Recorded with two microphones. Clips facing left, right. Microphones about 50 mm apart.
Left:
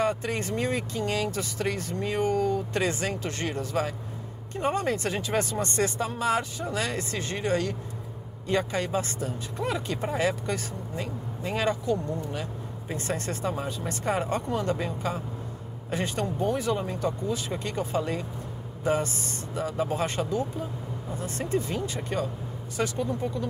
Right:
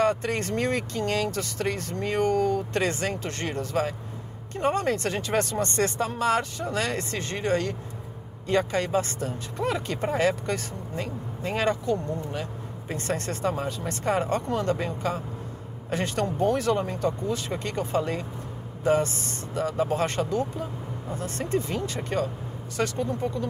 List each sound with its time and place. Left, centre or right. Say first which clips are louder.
0.0 s speech: right 3 dB; right
4.9 s speech: right 1 dB; left
5.2 s speech: right 2 dB; right
19.5 s speech: right 3 dB; right